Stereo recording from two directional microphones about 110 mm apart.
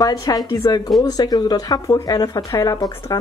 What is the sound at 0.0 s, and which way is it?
Speech, 35° left (ahead or behind).